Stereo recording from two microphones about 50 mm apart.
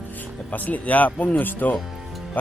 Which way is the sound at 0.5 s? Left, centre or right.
Left.